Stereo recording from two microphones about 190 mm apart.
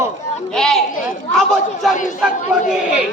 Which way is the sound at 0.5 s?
5° left (ahead or behind).